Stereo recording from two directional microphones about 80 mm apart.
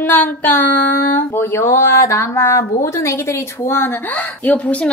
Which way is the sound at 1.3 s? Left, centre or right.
Left.